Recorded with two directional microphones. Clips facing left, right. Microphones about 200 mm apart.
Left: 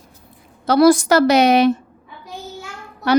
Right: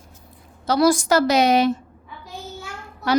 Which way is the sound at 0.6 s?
60° left (ahead or behind).